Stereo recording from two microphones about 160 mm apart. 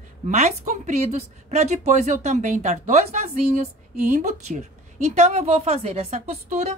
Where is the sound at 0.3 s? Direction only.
45° right (ahead or behind).